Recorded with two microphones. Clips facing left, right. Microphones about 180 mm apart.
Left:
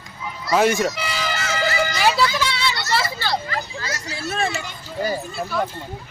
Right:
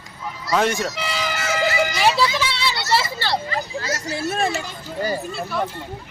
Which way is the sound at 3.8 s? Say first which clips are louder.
Right 4 dB; 45° right (ahead or behind).